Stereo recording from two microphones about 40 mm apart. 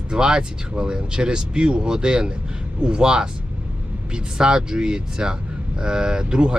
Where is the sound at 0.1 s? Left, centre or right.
Centre.